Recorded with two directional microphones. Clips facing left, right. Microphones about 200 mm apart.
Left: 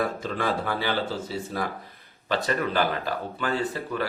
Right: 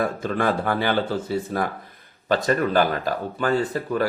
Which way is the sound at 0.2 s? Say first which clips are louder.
Right 4 dB; 50° right (ahead or behind).